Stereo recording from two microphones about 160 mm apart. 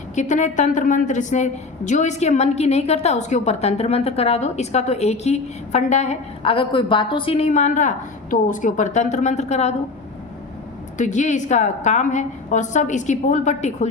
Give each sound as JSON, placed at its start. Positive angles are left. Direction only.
{"t": 0.2, "sound": "a woman's voice", "side_deg": 50}
{"t": 10.9, "sound": "a woman's voice", "side_deg": 50}